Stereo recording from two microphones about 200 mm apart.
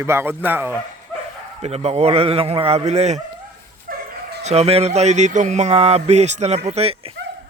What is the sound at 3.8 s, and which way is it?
Dog, 55° right (ahead or behind).